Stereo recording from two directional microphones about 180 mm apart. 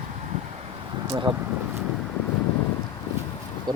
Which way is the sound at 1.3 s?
25° right (ahead or behind).